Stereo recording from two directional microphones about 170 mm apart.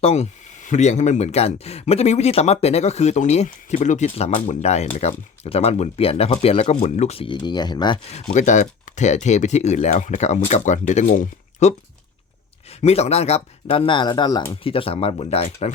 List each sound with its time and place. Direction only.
0.0 s speech: 40° left (ahead or behind)
8.1 s speech: 45° left (ahead or behind)
12.8 s speech: 40° left (ahead or behind)